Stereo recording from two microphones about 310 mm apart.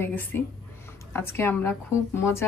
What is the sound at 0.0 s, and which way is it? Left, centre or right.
Speech, centre.